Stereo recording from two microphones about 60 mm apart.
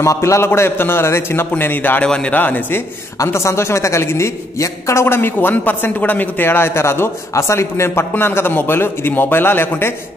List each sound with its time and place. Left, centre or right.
0.0 s a man's voice: left
0.6 s a man's voice: left
1.6 s a man's voice: left
2.0 s speech: centre
2.3 s a man's voice: left
3.2 s a man's voice: left
5.0 s a man's voice: left